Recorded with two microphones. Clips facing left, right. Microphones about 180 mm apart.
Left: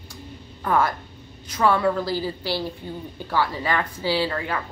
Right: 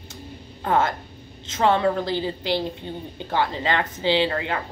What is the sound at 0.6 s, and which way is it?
A woman's voice, 25° right (ahead or behind).